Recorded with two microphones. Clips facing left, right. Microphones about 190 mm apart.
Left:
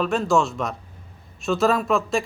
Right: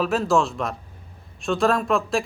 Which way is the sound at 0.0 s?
Centre (ahead or behind).